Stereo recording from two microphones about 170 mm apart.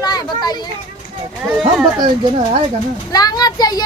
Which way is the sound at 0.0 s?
25° left (ahead or behind).